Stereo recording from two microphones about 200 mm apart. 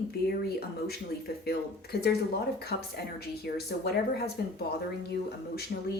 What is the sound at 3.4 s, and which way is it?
Speech, 55° left (ahead or behind).